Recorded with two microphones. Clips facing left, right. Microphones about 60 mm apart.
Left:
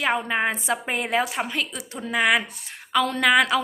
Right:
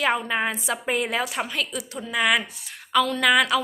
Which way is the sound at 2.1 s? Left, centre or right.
Left.